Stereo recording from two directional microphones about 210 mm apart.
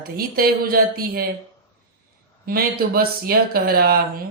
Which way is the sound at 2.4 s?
45° right (ahead or behind).